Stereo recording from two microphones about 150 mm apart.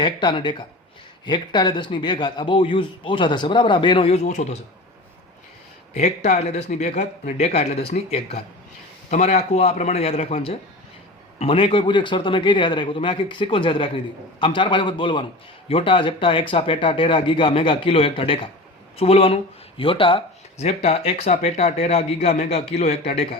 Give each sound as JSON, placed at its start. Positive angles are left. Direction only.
{"t": 0.0, "sound": "a man's voice", "side_deg": 30}
{"t": 5.9, "sound": "a man's voice", "side_deg": 45}